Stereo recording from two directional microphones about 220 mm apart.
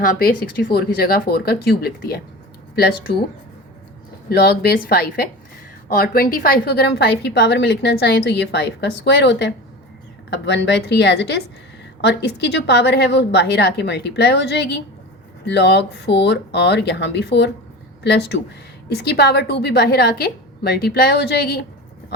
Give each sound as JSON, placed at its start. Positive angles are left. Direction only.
{"t": 0.0, "sound": "a woman's voice", "side_deg": 40}
{"t": 4.3, "sound": "a woman's voice", "side_deg": 50}